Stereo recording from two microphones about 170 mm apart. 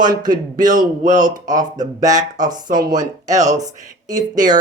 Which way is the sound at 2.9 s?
45° right (ahead or behind).